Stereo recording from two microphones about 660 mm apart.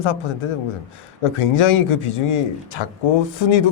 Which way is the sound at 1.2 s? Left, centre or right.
Left.